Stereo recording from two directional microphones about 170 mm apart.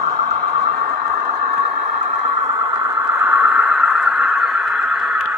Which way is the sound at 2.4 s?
20° right (ahead or behind).